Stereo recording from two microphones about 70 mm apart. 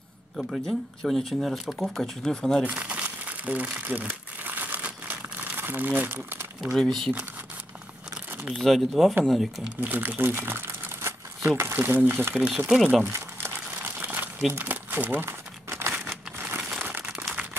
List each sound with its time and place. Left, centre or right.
0.4 s speech: centre
2.7 s crumpling: centre
6.8 s speech: centre
8.6 s speech: centre
9.8 s speech: right
12.4 s speech: centre
13.0 s crumpling: right
13.9 s crumpling: right
14.5 s speech: right
15.2 s crumpling: right
16.3 s crumpling: right
17.1 s crumpling: centre